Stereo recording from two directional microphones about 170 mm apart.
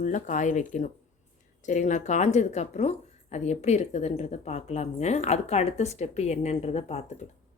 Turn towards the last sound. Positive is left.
turn(degrees=40)  # may be behind; listen again after turning